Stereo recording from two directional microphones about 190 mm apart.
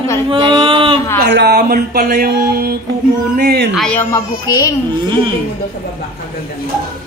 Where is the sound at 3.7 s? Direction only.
5° left (ahead or behind).